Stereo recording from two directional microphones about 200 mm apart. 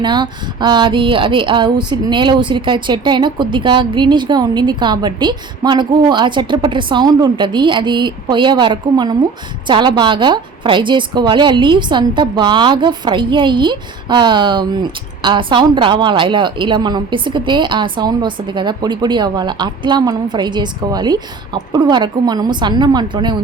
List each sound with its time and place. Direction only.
0.0 s a woman's voice: 20° right (ahead or behind)